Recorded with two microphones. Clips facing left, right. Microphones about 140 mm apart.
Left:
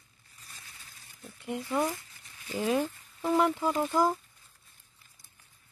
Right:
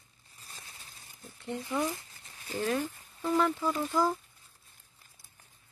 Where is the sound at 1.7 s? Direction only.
25° left (ahead or behind).